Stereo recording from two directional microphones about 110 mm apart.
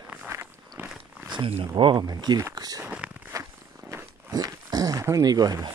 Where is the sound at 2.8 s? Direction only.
10° right (ahead or behind).